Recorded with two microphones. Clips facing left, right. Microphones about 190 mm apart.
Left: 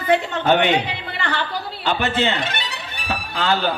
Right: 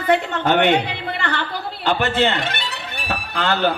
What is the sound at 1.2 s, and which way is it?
Music, 60° right (ahead or behind).